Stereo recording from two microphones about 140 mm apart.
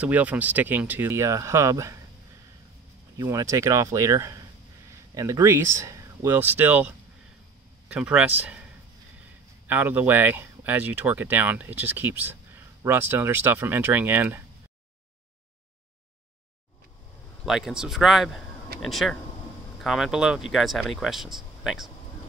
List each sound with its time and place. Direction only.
0.0 s speech: 10° right (ahead or behind)
3.2 s speech: 25° right (ahead or behind)
9.7 s speech: 15° right (ahead or behind)
17.5 s speech: 5° right (ahead or behind)